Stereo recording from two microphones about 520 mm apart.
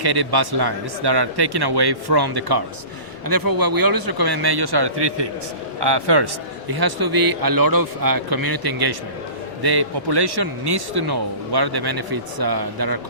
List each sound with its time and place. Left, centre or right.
0.0 s a man's voice: right